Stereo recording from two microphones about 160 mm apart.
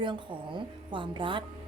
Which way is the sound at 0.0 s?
30° right (ahead or behind).